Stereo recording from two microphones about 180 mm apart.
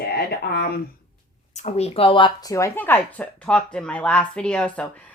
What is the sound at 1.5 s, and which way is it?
Speech, 35° left (ahead or behind).